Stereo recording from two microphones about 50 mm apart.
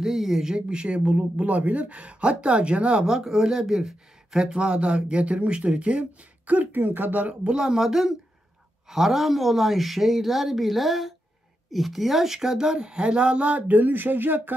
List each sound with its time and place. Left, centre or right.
0.0 s speech: centre
0.6 s speech: right
3.1 s speech: centre; by 7.3 s right
7.4 s speech: centre; by 14.5 s right